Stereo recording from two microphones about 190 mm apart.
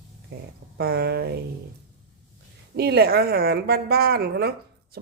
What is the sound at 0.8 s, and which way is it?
Speech, 55° right (ahead or behind).